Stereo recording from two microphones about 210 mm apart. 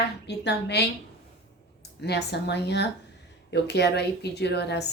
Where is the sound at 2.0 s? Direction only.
50° left (ahead or behind).